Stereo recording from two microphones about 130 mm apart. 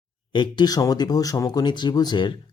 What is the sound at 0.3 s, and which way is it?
Speech, 35° left (ahead or behind).